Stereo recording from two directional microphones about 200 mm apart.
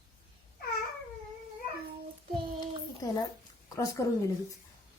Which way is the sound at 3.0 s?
20° left (ahead or behind).